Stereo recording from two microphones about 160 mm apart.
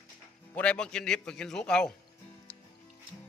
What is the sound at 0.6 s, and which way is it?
A man's voice, 5° left (ahead or behind).